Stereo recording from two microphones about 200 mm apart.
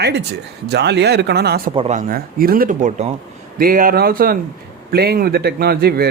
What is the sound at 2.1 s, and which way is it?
Speech, 45° right (ahead or behind).